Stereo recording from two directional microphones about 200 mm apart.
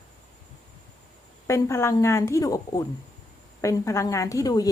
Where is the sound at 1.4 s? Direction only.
15° left (ahead or behind).